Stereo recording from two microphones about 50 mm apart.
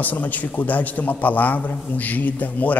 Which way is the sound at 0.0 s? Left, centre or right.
Left.